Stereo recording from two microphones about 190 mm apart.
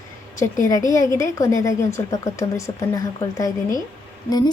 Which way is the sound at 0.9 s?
15° left (ahead or behind).